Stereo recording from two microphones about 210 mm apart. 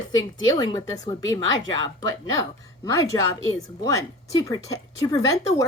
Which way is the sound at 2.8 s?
15° left (ahead or behind).